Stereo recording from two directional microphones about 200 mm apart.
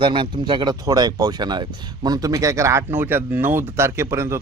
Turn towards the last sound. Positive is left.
turn(degrees=-15)  # may be behind; listen again after turning